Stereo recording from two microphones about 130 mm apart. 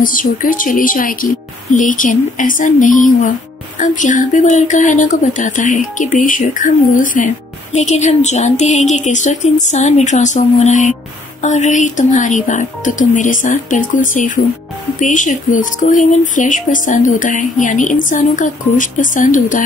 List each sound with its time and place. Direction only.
0.0 s a woman's voice: 90° left
3.8 s speech: 75° left (ahead or behind)
7.7 s speech: 60° left (ahead or behind); by 14.4 s 90° left
15.0 s speech: 75° left (ahead or behind); by 19.6 s 90° left